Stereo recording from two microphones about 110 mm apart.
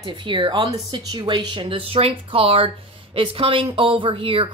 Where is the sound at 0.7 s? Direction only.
35° right (ahead or behind).